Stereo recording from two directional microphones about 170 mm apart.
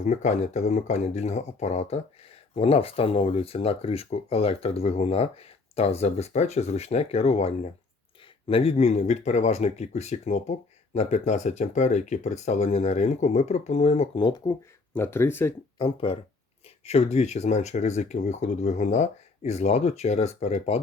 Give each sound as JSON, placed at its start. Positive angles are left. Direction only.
{"t": 0.0, "sound": "speech", "side_deg": 45}
{"t": 14.9, "sound": "speech", "side_deg": 15}
{"t": 15.8, "sound": "speech", "side_deg": 35}